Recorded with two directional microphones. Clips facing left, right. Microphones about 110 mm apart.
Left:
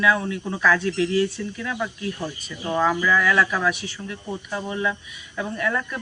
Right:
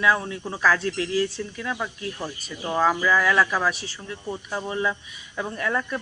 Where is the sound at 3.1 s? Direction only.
25° right (ahead or behind).